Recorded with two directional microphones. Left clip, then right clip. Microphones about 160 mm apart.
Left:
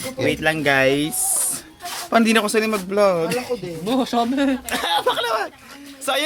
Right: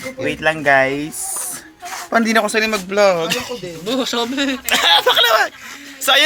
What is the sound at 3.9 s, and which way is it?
Speech, 60° left (ahead or behind).